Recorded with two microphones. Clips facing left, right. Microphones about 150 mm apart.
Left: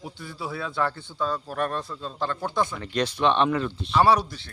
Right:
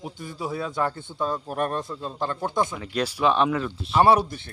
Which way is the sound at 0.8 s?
15° right (ahead or behind).